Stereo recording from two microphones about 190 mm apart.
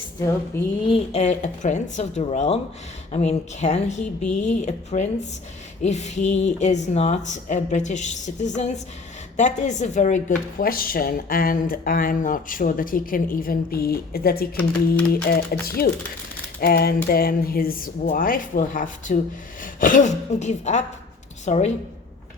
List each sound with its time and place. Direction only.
0.5 s speech: 15° left (ahead or behind)
0.9 s a woman's voice: 35° left (ahead or behind)